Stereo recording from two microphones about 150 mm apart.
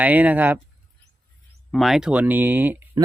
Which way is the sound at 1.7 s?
Centre (ahead or behind).